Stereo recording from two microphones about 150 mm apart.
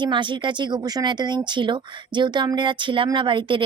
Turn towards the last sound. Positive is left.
turn(degrees=-35)  # may be behind; listen again after turning